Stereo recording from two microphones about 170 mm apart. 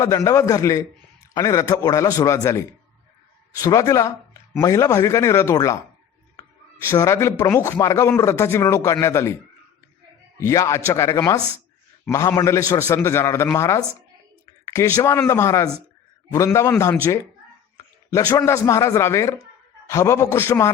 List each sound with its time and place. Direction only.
0.0 s a man's voice: 20° left (ahead or behind)
6.9 s speech: 15° left (ahead or behind)
10.4 s speech: 20° left (ahead or behind)